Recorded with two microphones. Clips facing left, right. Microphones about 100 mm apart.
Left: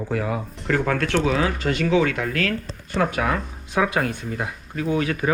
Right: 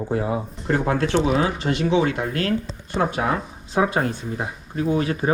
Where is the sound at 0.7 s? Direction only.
5° right (ahead or behind).